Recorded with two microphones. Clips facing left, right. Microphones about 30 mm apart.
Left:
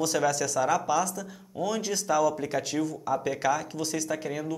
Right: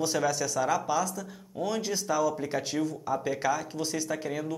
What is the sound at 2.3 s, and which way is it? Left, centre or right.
Speech, centre.